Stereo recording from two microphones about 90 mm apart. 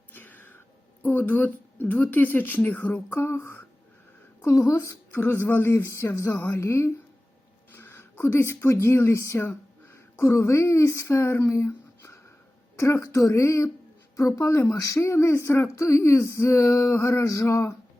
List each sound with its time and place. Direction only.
0.1 s a sound: 20° left (ahead or behind)
1.0 s a woman's voice: 20° left (ahead or behind)
5.1 s a woman's voice: 25° left (ahead or behind)